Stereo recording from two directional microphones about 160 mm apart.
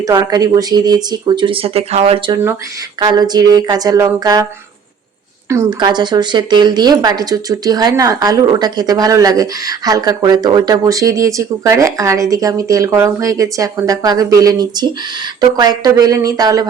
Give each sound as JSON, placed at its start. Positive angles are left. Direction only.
{"t": 0.1, "sound": "speech", "side_deg": -25}
{"t": 3.0, "sound": "speech", "side_deg": -25}
{"t": 5.5, "sound": "speech", "side_deg": -20}